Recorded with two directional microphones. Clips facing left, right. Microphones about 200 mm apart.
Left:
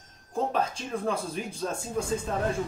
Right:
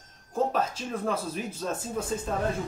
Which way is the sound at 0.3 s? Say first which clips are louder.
Right 1 dB; 5° right (ahead or behind).